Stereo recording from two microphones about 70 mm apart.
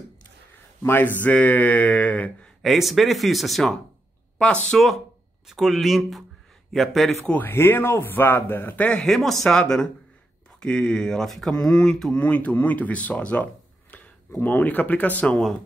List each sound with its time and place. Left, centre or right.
0.8 s speech: left
2.6 s speech: centre
5.5 s speech: centre
7.2 s a man's voice: left
9.0 s speech: centre
12.2 s speech: left